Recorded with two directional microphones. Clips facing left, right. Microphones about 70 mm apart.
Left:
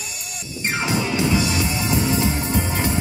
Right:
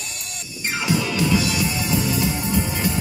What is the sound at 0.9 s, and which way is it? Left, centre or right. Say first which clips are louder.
Music: right 1 dB; left.